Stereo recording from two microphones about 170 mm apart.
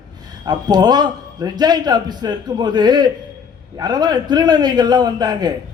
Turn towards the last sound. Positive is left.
turn(degrees=-25)  # may be behind; listen again after turning